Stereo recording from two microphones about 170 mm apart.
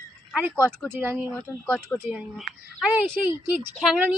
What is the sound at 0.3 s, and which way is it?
Speech, 10° right (ahead or behind).